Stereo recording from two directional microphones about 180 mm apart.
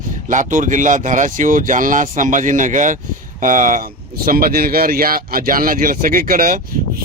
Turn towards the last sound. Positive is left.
turn(degrees=-50)  # may be behind; listen again after turning